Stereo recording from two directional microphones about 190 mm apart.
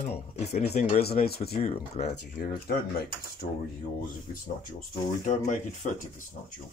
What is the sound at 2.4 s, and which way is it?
Speech, 50° left (ahead or behind).